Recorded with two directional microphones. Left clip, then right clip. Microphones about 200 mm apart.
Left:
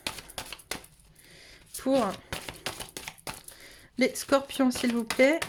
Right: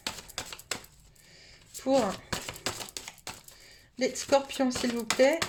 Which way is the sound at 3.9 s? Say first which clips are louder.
Left 1 dB; 25° left (ahead or behind).